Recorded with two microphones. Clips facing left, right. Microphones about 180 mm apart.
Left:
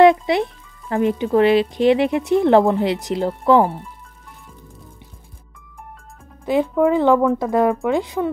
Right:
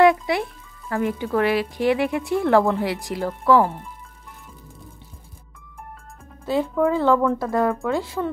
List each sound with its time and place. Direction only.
0.0 s speech: 25° left (ahead or behind)
6.4 s speech: 15° left (ahead or behind)